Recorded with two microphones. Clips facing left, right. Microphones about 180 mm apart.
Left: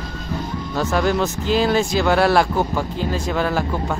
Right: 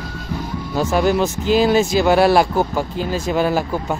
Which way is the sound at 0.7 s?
15° right (ahead or behind).